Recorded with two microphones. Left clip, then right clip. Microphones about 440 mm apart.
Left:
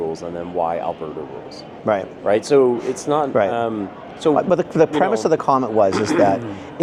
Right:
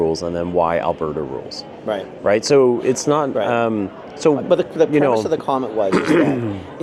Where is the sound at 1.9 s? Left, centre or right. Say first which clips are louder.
Left 4 dB; left.